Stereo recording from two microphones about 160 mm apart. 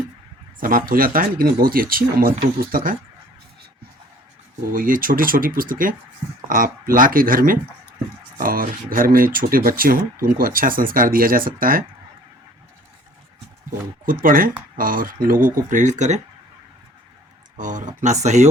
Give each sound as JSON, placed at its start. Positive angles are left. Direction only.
{"t": 0.6, "sound": "speech", "side_deg": -60}
{"t": 4.6, "sound": "speech", "side_deg": -60}
{"t": 13.7, "sound": "speech", "side_deg": -60}
{"t": 17.6, "sound": "speech", "side_deg": -50}